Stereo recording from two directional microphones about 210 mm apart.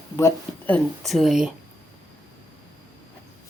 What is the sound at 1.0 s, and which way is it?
Speech, centre (ahead or behind).